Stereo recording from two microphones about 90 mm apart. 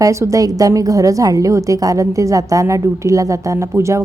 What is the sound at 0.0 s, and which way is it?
A woman's voice, 35° right (ahead or behind).